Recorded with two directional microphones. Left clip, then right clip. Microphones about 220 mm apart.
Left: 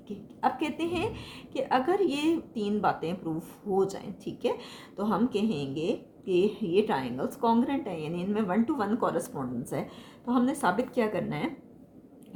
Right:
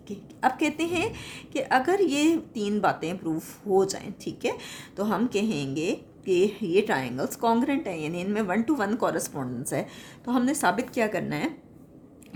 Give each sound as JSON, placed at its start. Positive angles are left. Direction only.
{"t": 0.4, "sound": "a woman's voice", "side_deg": -55}